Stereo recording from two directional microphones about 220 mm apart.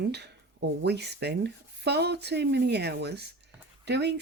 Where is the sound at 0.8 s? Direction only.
50° right (ahead or behind).